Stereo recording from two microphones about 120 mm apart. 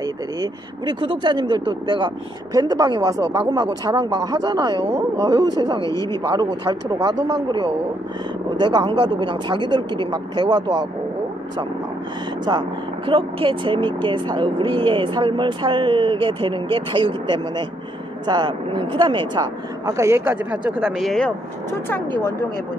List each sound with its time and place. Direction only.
0.0 s speech: 35° right (ahead or behind)
12.4 s speech: 40° right (ahead or behind)
19.9 s speech: 25° right (ahead or behind)
21.0 s speech: 5° left (ahead or behind)